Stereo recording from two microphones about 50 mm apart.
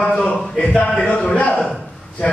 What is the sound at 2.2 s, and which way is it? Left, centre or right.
Speech, left.